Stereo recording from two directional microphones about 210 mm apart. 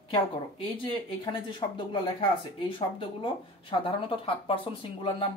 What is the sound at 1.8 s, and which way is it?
Speech, 25° left (ahead or behind).